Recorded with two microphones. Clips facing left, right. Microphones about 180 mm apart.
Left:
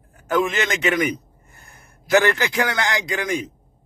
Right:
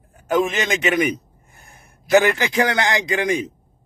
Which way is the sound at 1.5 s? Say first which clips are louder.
Right 1 dB; 15° right (ahead or behind).